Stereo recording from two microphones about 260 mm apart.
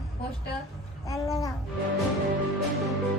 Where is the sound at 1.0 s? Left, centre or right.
Centre.